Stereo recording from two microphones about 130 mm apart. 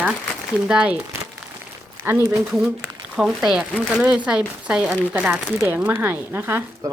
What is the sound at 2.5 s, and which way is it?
Speech, 5° right (ahead or behind).